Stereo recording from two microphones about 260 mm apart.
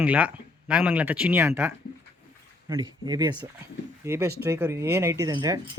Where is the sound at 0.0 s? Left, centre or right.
Centre.